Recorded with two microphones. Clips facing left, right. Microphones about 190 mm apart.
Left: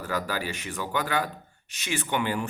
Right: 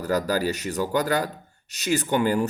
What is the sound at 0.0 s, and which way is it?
Speech, 40° right (ahead or behind).